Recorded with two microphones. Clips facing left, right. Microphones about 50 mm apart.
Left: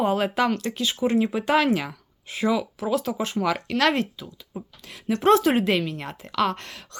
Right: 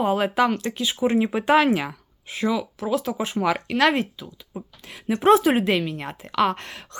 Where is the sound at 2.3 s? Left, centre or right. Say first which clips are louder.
Left 1 dB; centre.